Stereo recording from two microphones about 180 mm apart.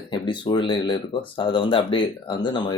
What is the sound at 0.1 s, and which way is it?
Speech, 25° left (ahead or behind).